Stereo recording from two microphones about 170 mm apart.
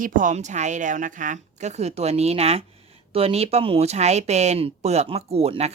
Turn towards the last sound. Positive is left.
turn(degrees=-35)  # may be behind; listen again after turning